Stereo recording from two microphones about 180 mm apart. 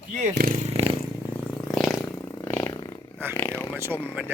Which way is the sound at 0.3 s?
55° right (ahead or behind).